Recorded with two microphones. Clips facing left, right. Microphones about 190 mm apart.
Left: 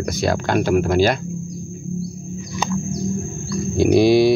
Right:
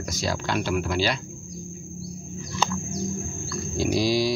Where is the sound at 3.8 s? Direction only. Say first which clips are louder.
Left 10 dB; 60° left (ahead or behind).